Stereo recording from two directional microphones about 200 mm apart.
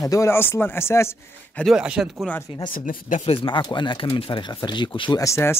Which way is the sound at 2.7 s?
45° left (ahead or behind).